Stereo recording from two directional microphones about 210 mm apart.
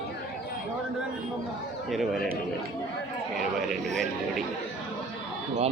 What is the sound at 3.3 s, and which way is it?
Speech, centre (ahead or behind).